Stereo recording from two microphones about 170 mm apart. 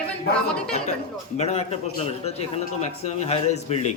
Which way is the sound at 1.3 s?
40° left (ahead or behind).